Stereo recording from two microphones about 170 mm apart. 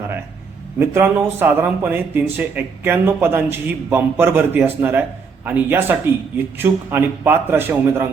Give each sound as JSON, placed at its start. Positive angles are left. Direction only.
{"t": 0.8, "sound": "a man's voice", "side_deg": -10}